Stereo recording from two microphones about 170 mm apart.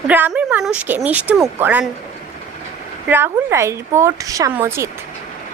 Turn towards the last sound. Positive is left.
turn(degrees=-15)  # may be behind; listen again after turning